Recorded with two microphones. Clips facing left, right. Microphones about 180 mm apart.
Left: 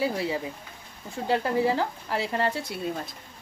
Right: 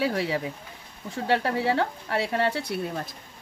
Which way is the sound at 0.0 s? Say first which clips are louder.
Right 1 dB; 80° right.